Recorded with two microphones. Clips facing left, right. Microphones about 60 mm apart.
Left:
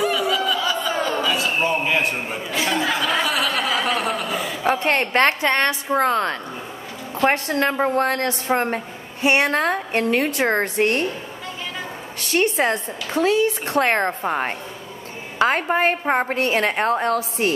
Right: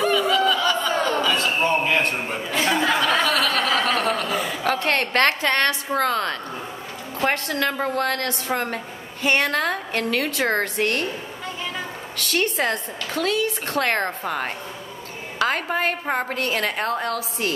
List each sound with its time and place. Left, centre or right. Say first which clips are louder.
0.0 s a sound: right 2 dB; centre
2.2 s chuckle: right 1 dB; centre
4.6 s a woman's voice: left 4 dB; left
12.2 s a woman's voice: left 3 dB; left